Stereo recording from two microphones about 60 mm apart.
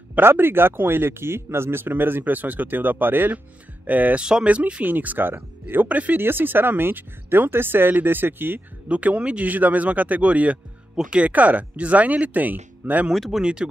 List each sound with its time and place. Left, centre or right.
0.2 s speech: right
4.2 s speech: centre
4.8 s speech: right
6.1 s speech: right
8.8 s speech: right
13.1 s speech: centre
13.4 s speech: centre